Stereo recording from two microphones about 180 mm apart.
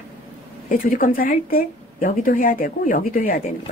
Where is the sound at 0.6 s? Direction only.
50° left (ahead or behind).